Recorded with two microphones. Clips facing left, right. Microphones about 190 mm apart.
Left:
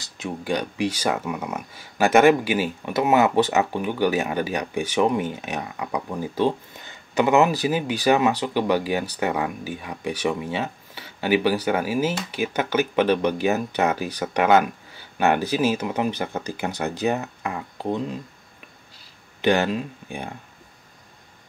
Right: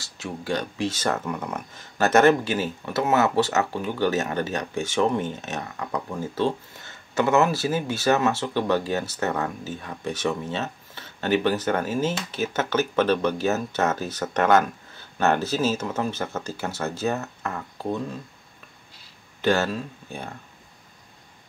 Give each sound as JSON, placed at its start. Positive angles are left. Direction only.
{"t": 0.0, "sound": "speech", "side_deg": 15}
{"t": 19.4, "sound": "speech", "side_deg": 15}